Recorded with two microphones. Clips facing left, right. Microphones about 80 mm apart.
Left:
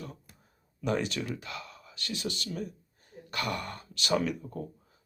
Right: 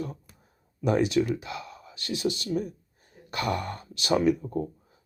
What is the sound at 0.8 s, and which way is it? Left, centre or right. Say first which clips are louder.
Speech: right 7 dB; right.